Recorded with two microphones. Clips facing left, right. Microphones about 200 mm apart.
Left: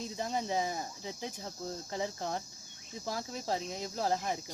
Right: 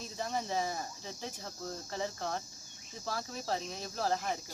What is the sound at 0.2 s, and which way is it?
Speech, 20° left (ahead or behind).